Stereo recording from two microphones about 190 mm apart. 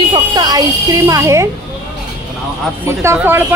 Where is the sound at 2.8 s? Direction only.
15° right (ahead or behind).